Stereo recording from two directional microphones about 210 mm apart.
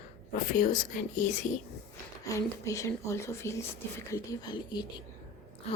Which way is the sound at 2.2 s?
15° left (ahead or behind).